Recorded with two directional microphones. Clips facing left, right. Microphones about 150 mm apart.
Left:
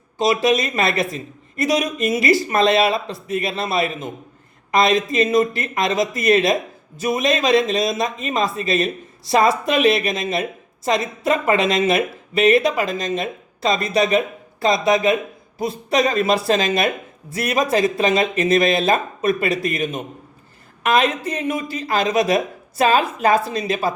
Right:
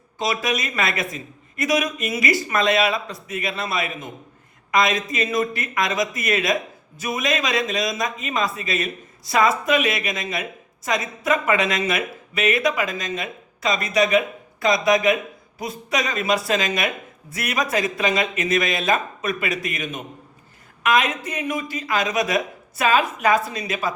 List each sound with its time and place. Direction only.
0.2 s speech: 25° left (ahead or behind)